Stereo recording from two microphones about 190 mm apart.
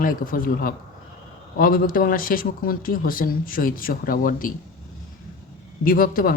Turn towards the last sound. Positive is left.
turn(degrees=50)  # may be behind; listen again after turning